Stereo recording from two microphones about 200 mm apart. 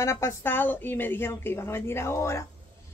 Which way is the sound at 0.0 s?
15° left (ahead or behind).